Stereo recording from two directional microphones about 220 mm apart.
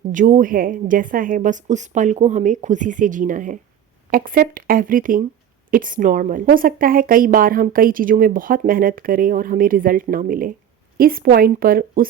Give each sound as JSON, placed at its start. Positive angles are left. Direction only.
{"t": 0.1, "sound": "a woman's voice", "side_deg": -35}